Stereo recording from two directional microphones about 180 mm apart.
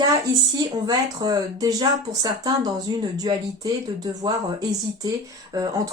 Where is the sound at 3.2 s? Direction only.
20° right (ahead or behind).